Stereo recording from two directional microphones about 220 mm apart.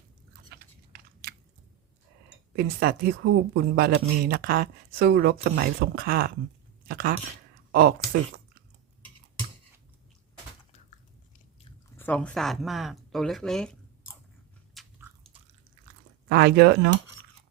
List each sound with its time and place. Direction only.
2.6 s speech: 45° right (ahead or behind)
11.9 s speech: 5° left (ahead or behind)
14.8 s biting: 10° right (ahead or behind)
16.3 s speech: 45° right (ahead or behind)